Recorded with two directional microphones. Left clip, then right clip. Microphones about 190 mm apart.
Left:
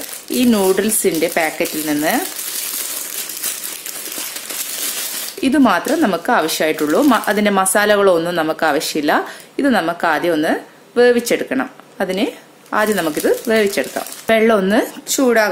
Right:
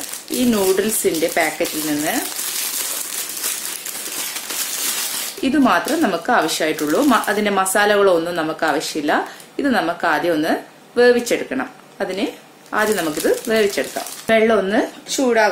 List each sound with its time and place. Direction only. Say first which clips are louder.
0.3 s speech: left 3 dB; 35° left (ahead or behind)
5.4 s speech: left 2 dB; 30° left (ahead or behind)